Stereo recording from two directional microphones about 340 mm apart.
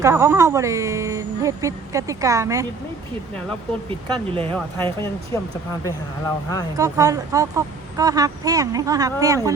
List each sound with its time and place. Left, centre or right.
0.0 s speech: centre
4.1 s speech: centre
4.5 s speech: centre
6.7 s speech: centre